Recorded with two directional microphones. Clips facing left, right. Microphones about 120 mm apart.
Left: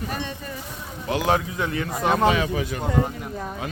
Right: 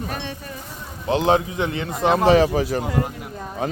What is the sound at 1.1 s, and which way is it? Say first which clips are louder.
Speech: right 4 dB; 25° right (ahead or behind).